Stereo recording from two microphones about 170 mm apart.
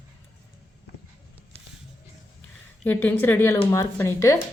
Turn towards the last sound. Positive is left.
turn(degrees=15)  # may be behind; listen again after turning